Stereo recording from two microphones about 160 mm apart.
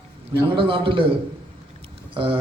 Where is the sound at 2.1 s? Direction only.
30° right (ahead or behind).